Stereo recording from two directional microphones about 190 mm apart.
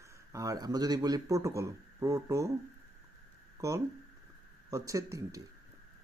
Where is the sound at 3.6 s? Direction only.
15° right (ahead or behind).